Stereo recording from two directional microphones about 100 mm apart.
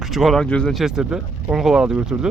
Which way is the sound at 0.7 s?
5° right (ahead or behind).